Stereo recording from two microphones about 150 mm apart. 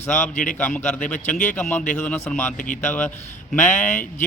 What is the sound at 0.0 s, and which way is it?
Speech, 15° left (ahead or behind).